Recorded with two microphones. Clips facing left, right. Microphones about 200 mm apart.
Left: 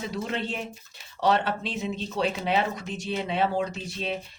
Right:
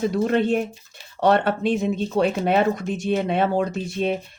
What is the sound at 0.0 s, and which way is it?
Speech, 50° right (ahead or behind).